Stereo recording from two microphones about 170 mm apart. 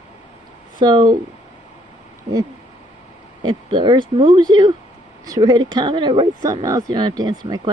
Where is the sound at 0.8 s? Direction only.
25° right (ahead or behind).